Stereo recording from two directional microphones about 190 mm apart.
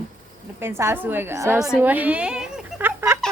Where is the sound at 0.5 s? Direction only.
15° right (ahead or behind).